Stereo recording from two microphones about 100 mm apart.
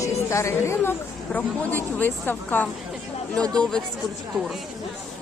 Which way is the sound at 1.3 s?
15° left (ahead or behind).